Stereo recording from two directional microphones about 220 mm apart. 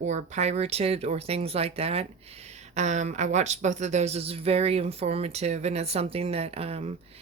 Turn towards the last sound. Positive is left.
turn(degrees=-30)  # may be behind; listen again after turning